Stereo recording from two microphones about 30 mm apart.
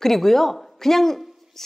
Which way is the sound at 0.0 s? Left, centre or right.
Centre.